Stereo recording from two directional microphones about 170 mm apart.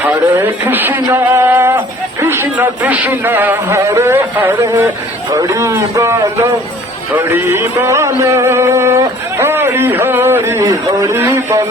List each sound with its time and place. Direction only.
0.0 s a sound: 15° right (ahead or behind)
2.2 s a man's voice: 15° right (ahead or behind)
7.2 s a man's voice: 15° right (ahead or behind)